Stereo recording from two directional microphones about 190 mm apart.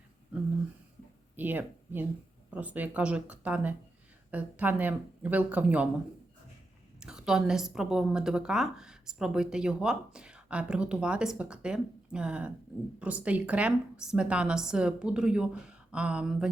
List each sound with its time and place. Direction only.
1.4 s speech: 10° right (ahead or behind)
7.0 s a woman's voice: 5° right (ahead or behind)